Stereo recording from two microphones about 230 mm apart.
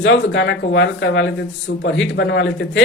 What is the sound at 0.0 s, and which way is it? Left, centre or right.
Speech, left.